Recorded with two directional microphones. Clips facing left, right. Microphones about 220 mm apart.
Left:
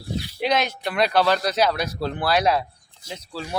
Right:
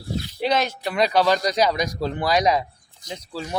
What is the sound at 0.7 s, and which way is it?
Speech, 10° right (ahead or behind).